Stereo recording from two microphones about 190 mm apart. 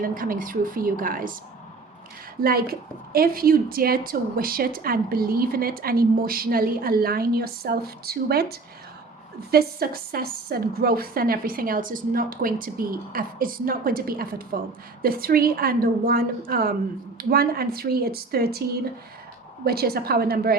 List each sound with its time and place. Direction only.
0.0 s a woman's voice: 45° right (ahead or behind)
2.4 s a woman's voice: 50° right (ahead or behind)
19.6 s a woman's voice: 55° right (ahead or behind)